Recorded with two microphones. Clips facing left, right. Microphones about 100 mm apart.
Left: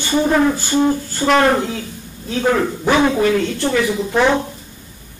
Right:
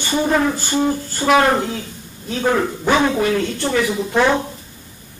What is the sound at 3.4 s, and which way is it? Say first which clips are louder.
Speech: left 2 dB; 15° right (ahead or behind).